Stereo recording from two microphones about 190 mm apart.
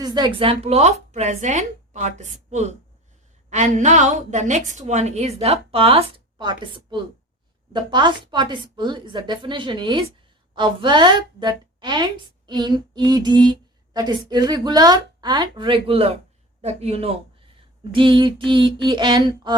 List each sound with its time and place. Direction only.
0.0 s a woman's voice: 20° right (ahead or behind)